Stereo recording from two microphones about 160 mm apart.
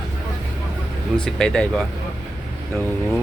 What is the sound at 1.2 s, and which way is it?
Speech, 5° left (ahead or behind).